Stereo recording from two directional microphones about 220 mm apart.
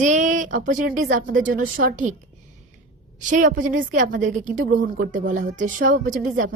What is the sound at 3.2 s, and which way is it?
A woman's voice, 35° right (ahead or behind).